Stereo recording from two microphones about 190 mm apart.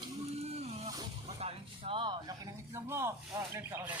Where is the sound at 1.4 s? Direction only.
30° right (ahead or behind).